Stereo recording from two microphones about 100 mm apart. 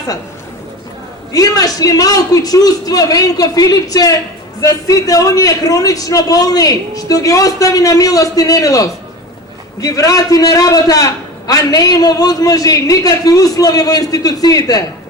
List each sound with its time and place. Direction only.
1.3 s a man's voice: 40° left (ahead or behind)